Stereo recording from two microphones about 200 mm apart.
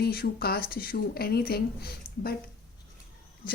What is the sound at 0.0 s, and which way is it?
Speech, 50° left (ahead or behind).